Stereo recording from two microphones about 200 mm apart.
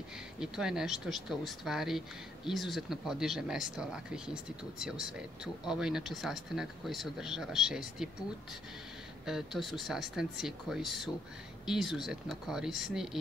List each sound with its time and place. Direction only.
0.4 s speech: 5° right (ahead or behind)
9.2 s speech: centre (ahead or behind)